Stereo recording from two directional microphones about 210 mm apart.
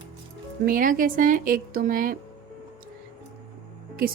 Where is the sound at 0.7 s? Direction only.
40° right (ahead or behind).